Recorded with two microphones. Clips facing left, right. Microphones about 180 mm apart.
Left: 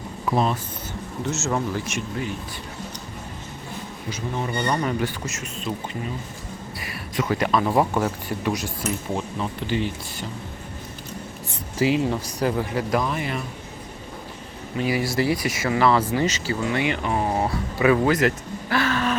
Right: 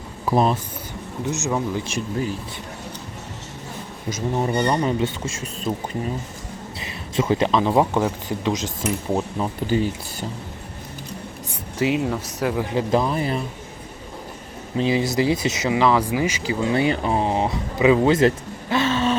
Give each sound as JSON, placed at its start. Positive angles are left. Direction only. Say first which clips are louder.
{"t": 0.3, "sound": "speech", "louder": "right 3 dB", "side_deg": -40}
{"t": 1.2, "sound": "speech", "louder": "right 2 dB", "side_deg": -15}
{"t": 1.8, "sound": "speech", "louder": "right 3 dB", "side_deg": -30}
{"t": 4.1, "sound": "speech", "louder": "right 5 dB", "side_deg": -40}
{"t": 4.5, "sound": "speech", "louder": "right 1 dB", "side_deg": -20}
{"t": 6.7, "sound": "speech", "louder": "right 4 dB", "side_deg": -25}
{"t": 9.4, "sound": "speech", "louder": "right 4 dB", "side_deg": -40}
{"t": 11.8, "sound": "speech", "louder": "even", "side_deg": 0}
{"t": 12.7, "sound": "speech", "louder": "right 3 dB", "side_deg": -30}
{"t": 14.8, "sound": "speech", "louder": "right 3 dB", "side_deg": -25}
{"t": 16.7, "sound": "speech", "louder": "right 5 dB", "side_deg": -35}